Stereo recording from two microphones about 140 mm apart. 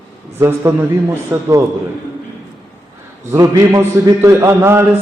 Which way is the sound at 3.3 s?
25° right (ahead or behind).